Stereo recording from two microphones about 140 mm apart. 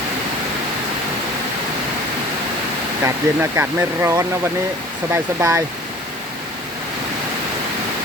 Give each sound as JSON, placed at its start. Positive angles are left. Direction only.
{"t": 3.0, "sound": "speech", "side_deg": -20}